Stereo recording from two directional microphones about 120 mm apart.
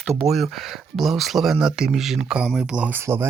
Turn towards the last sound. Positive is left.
turn(degrees=-20)  # may be behind; listen again after turning